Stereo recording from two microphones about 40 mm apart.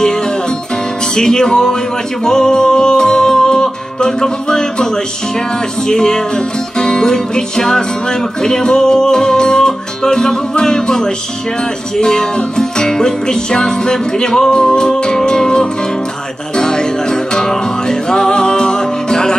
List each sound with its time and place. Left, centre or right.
1.1 s music: centre